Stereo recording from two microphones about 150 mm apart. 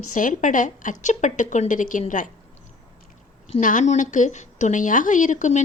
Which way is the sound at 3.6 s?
60° left (ahead or behind).